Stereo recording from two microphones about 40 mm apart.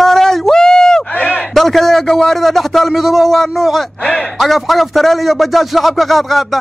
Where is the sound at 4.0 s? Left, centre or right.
Left.